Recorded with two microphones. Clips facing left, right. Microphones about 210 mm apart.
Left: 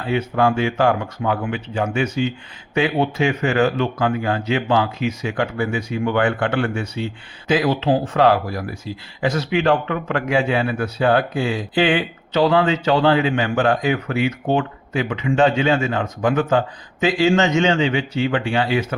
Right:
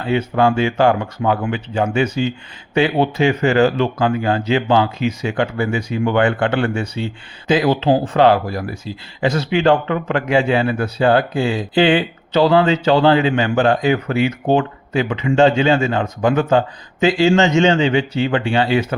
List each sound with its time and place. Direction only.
0.1 s a man's voice: 25° right (ahead or behind)